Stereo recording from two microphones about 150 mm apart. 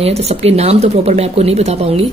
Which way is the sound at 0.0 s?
45° right (ahead or behind).